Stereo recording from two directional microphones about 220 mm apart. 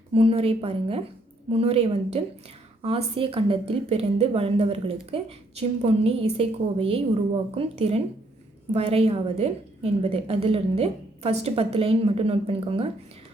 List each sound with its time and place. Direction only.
0.1 s a woman's voice: 25° right (ahead or behind)